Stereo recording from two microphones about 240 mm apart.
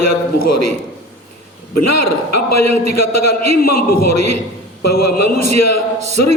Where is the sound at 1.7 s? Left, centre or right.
Left.